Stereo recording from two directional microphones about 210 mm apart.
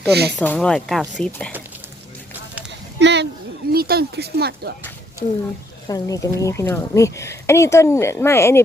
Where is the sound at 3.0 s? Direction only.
55° right (ahead or behind).